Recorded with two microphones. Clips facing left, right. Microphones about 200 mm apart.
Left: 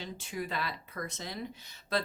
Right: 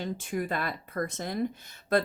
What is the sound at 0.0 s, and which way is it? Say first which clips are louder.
A woman's voice: right 6 dB; 50° right (ahead or behind).